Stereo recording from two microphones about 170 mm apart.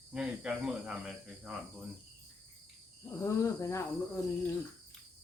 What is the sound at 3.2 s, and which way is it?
Speech, 15° left (ahead or behind).